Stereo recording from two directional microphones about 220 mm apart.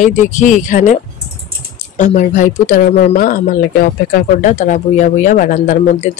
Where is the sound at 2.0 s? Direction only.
35° left (ahead or behind).